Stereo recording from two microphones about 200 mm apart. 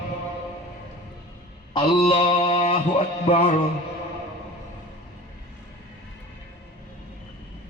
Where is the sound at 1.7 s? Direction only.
25° left (ahead or behind).